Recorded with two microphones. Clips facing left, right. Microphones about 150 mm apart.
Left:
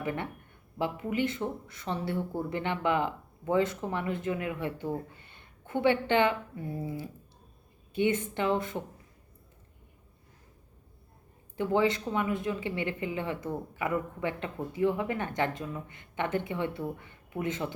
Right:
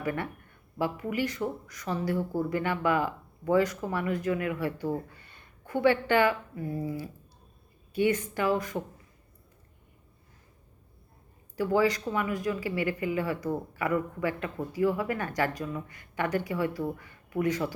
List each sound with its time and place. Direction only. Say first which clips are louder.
0.0 s a woman's voice: right 2 dB; 20° left (ahead or behind)
11.5 s speech: right 1 dB; 25° left (ahead or behind)